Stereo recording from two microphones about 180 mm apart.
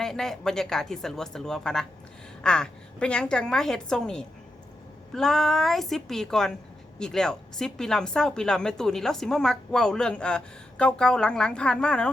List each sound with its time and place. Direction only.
0.0 s speech: centre (ahead or behind)